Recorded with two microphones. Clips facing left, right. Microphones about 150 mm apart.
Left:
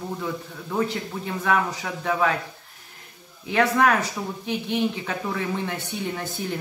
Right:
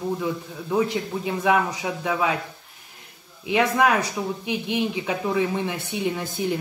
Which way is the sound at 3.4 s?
15° right (ahead or behind).